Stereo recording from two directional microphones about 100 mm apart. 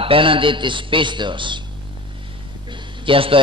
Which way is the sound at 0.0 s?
60° right (ahead or behind).